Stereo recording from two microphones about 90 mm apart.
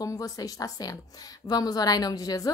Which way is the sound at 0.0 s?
40° left (ahead or behind).